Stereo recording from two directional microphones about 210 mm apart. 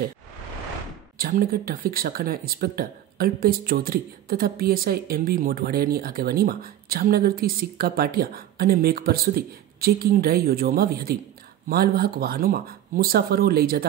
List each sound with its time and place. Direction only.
1.1 s speech: 45° right (ahead or behind)